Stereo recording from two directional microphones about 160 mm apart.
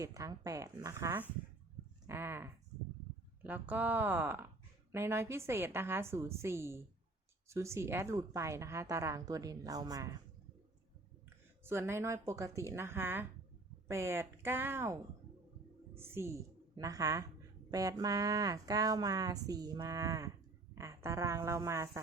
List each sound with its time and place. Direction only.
0.0 s speech: 20° right (ahead or behind)
11.6 s a woman's voice: 15° right (ahead or behind)